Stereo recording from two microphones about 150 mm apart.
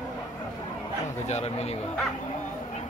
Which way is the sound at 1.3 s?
45° left (ahead or behind).